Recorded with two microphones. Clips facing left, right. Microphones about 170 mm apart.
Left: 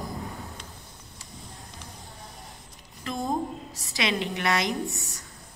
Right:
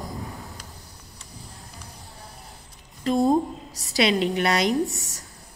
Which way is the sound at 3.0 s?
35° right (ahead or behind).